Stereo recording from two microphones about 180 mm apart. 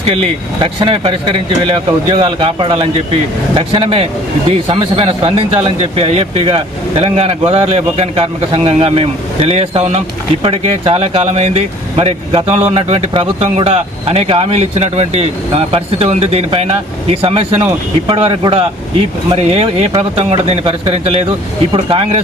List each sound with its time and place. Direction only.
0.0 s speech: 35° right (ahead or behind)